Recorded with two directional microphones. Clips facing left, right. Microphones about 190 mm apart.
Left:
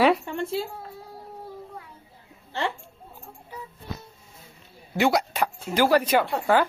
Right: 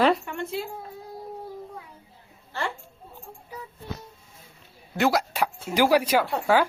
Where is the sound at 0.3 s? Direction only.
30° left (ahead or behind).